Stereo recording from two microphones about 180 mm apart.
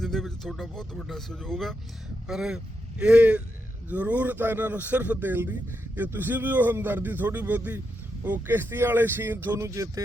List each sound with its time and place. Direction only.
0.0 s a man's voice: 5° left (ahead or behind); by 10.0 s 20° right (ahead or behind)